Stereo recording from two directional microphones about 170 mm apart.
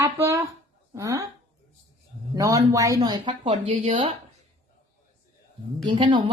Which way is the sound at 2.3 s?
20° right (ahead or behind).